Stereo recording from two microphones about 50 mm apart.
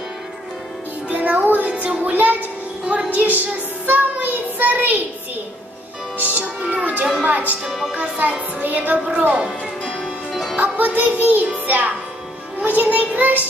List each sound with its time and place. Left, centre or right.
1.1 s music: right
1.7 s child singing: right
2.0 s speech: right
3.2 s child singing: right
6.3 s music: right
7.2 s speech: right
7.6 s speech: centre
7.9 s a woman's voice: right
9.3 s music: centre
10.5 s music: right
11.2 s a woman's voice: right